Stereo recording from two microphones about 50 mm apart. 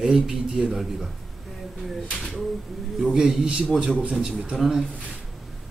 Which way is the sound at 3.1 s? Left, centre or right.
Centre.